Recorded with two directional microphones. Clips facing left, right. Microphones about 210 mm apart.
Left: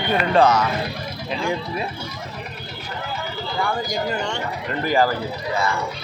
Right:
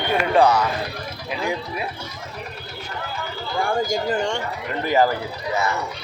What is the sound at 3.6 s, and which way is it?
Speech, 45° right (ahead or behind).